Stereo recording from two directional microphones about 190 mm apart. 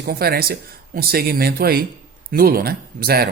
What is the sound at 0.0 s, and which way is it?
Speech, 55° right (ahead or behind).